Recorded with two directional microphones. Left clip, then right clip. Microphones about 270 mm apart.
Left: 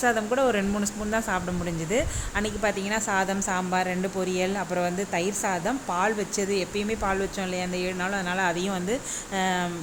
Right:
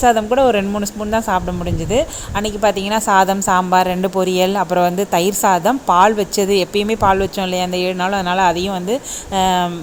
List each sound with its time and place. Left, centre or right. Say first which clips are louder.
0.0 s a woman's voice: right 11 dB; centre